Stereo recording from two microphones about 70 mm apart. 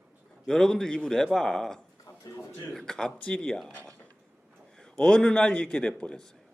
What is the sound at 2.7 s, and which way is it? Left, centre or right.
Speech, centre.